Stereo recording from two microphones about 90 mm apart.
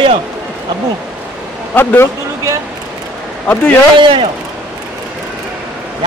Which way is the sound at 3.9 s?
70° right (ahead or behind).